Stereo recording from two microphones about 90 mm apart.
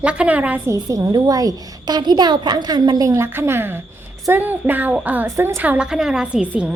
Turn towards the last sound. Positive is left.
turn(degrees=-15)  # may be behind; listen again after turning